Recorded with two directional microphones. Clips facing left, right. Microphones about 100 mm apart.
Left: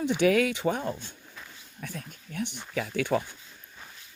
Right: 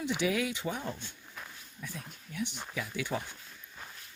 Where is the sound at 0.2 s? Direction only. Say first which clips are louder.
Left 11 dB; 60° left (ahead or behind).